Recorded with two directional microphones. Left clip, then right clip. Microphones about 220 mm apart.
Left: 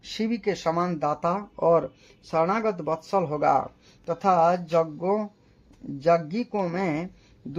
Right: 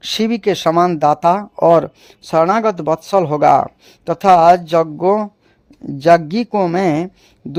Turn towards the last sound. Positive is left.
turn(degrees=-45)  # may be behind; listen again after turning